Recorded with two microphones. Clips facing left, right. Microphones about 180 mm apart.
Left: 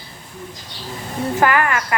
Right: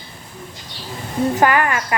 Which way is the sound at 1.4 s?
20° right (ahead or behind).